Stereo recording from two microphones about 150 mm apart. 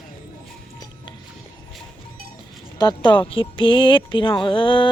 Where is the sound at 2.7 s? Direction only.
30° left (ahead or behind).